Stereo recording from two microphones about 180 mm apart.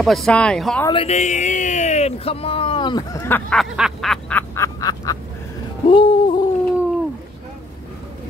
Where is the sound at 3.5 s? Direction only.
Centre (ahead or behind); by 5.2 s 20° left (ahead or behind).